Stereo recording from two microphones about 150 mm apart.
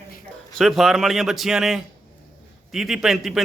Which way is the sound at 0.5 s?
Centre (ahead or behind).